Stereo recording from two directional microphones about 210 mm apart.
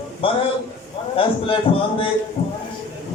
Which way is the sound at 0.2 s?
25° left (ahead or behind).